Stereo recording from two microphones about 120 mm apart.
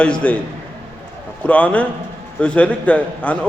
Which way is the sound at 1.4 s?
10° left (ahead or behind).